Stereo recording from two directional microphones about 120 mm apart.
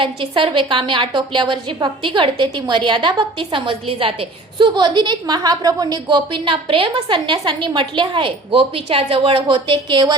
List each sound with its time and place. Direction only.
0.0 s a woman's voice: 45° right (ahead or behind)